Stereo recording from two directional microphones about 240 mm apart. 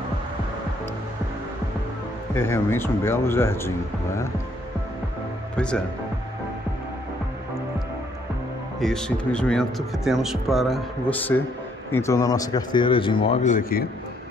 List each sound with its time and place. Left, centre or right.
2.3 s speech: centre
8.8 s speech: centre; by 13.8 s left